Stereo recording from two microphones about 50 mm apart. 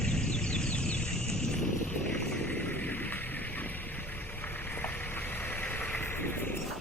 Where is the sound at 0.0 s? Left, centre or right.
Centre.